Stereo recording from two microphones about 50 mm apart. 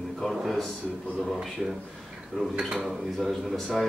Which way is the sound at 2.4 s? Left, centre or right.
Centre.